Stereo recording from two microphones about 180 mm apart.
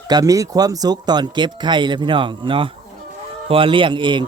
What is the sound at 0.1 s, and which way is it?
Speech, 20° right (ahead or behind).